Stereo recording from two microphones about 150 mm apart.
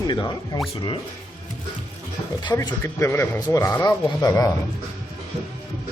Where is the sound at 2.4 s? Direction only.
25° left (ahead or behind).